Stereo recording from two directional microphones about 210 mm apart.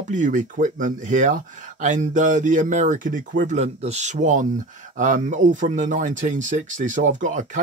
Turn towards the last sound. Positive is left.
turn(degrees=-35)  # may be behind; listen again after turning